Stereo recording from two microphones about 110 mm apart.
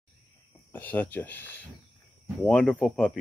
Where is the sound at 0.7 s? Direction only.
20° left (ahead or behind).